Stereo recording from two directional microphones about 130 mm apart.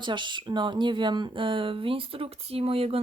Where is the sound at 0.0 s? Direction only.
35° right (ahead or behind).